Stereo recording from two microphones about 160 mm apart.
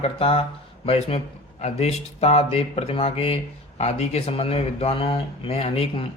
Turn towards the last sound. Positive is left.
turn(degrees=35)  # may be behind; listen again after turning